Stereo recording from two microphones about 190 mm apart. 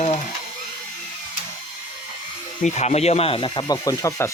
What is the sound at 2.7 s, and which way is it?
Rub, 35° left (ahead or behind).